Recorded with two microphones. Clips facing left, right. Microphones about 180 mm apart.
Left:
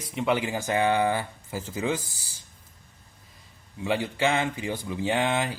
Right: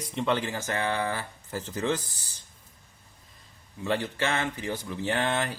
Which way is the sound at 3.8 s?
10° left (ahead or behind).